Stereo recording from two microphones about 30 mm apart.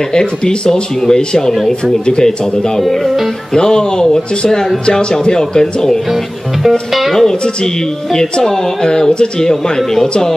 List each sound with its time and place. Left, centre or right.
0.1 s speech: left
3.5 s speech: left
5.5 s speech: centre
6.9 s music: centre
7.2 s speech: centre